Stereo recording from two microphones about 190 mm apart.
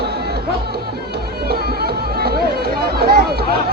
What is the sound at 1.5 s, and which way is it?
Music, 55° right (ahead or behind).